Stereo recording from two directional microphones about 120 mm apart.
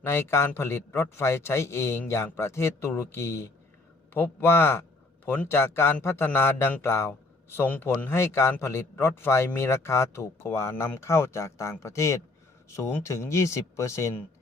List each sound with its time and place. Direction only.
0.0 s a man's voice: 20° left (ahead or behind)